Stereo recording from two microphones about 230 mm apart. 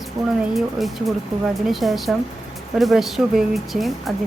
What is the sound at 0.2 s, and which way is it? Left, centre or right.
Speech, centre.